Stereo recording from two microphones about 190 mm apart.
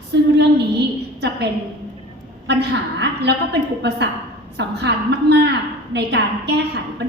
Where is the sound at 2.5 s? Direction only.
60° right (ahead or behind).